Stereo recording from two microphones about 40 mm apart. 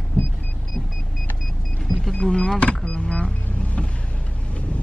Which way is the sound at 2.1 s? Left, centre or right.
Left.